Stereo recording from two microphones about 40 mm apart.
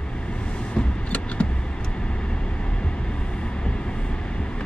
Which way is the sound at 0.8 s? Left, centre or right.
Left.